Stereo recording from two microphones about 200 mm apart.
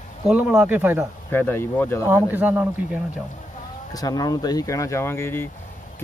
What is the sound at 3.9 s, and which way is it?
Speech, 20° left (ahead or behind).